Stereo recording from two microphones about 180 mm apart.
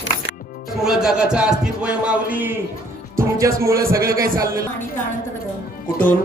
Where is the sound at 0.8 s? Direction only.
5° right (ahead or behind).